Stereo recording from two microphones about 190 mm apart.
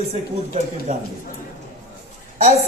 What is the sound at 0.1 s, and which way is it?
Speech, 35° right (ahead or behind).